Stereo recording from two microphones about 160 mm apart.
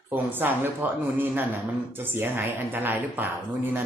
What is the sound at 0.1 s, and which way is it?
Speech, 10° right (ahead or behind).